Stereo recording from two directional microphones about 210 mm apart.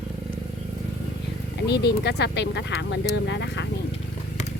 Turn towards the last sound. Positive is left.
turn(degrees=55)  # may be behind; listen again after turning